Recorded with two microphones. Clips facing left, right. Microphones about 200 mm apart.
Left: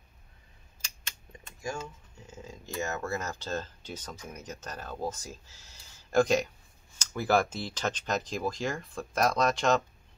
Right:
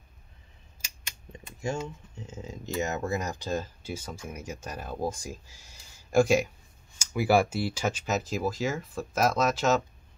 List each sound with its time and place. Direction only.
1.3 s speech: 25° right (ahead or behind); by 9.8 s 5° right (ahead or behind)